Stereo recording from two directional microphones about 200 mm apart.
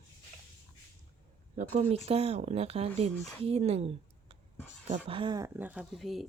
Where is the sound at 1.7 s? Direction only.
35° right (ahead or behind).